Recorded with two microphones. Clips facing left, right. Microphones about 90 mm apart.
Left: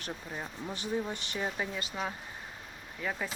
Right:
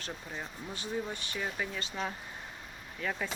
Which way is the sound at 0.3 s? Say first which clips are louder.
Left 2 dB; 20° left (ahead or behind).